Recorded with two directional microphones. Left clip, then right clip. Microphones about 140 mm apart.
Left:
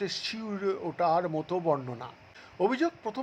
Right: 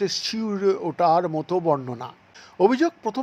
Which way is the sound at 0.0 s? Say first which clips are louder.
Right 8 dB; 25° right (ahead or behind).